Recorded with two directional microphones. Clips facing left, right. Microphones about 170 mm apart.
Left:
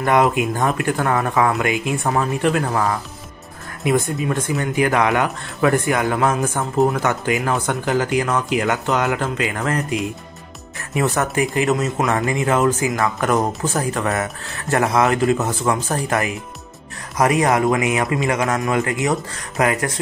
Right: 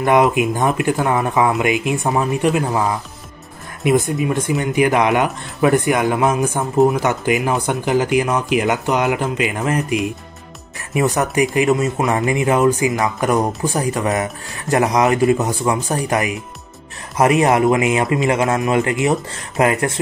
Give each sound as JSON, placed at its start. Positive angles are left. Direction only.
{"t": 0.0, "sound": "speech", "side_deg": -15}
{"t": 4.0, "sound": "speech", "side_deg": -20}
{"t": 11.0, "sound": "speech", "side_deg": -15}
{"t": 17.2, "sound": "a man's voice", "side_deg": -25}